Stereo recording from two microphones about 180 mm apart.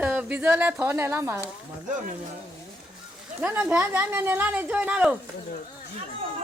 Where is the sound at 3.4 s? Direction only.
10° right (ahead or behind).